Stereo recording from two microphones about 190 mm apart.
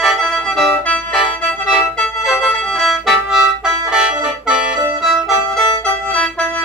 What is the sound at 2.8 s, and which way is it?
Music, centre (ahead or behind).